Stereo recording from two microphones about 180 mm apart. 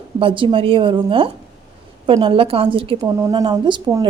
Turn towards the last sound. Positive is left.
turn(degrees=-25)  # may be behind; listen again after turning